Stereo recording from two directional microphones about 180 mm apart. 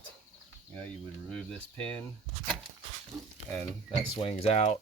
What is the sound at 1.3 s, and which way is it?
Speech, 5° left (ahead or behind).